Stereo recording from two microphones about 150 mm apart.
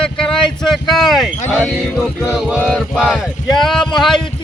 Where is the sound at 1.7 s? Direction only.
5° right (ahead or behind).